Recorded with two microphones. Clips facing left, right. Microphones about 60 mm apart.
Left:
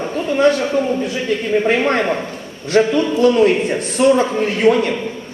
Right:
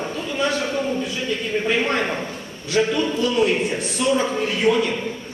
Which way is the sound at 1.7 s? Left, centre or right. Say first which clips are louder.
Left 3 dB; left.